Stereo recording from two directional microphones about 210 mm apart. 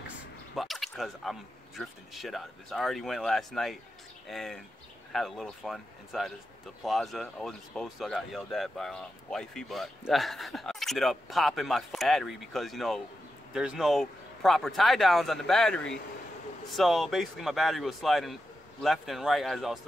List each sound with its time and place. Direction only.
0.6 s speech: centre (ahead or behind)